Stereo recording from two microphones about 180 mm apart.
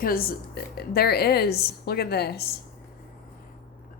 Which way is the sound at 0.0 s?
55° left (ahead or behind).